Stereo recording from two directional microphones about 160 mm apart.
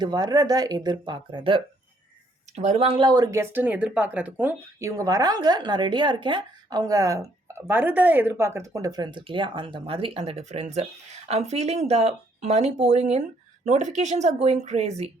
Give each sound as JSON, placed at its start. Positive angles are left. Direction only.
{"t": 0.0, "sound": "speech", "side_deg": -25}
{"t": 2.6, "sound": "speech", "side_deg": -40}